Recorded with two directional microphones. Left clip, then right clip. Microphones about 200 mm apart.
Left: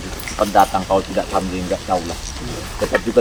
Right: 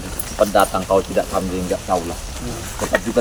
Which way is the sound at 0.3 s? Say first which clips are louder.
Left 1 dB; 10° right (ahead or behind).